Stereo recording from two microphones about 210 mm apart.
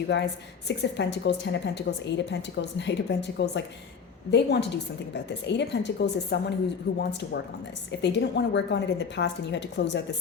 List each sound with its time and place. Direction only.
0.1 s a woman's voice: 55° left (ahead or behind)
8.0 s a woman's voice: 55° left (ahead or behind)